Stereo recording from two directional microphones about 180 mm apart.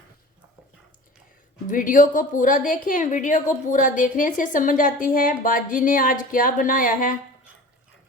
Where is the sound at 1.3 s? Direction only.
45° left (ahead or behind).